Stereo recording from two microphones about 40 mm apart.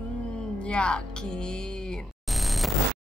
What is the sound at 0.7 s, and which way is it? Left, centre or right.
Speech, left.